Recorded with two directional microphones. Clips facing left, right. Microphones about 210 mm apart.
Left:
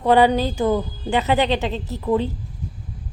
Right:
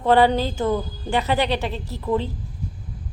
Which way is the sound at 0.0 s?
15° left (ahead or behind).